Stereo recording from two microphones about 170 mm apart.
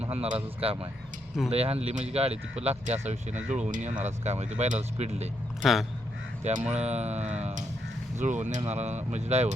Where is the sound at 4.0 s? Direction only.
40° right (ahead or behind).